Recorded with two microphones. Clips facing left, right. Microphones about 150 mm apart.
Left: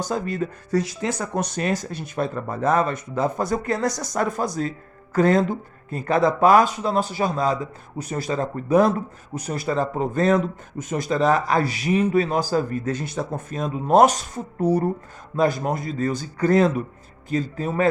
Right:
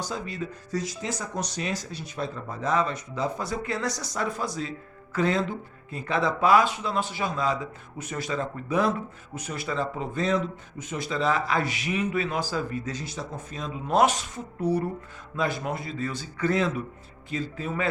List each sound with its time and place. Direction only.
0.0 s speech: 50° left (ahead or behind)